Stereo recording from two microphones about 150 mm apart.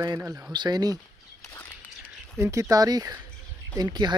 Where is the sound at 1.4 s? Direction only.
15° left (ahead or behind).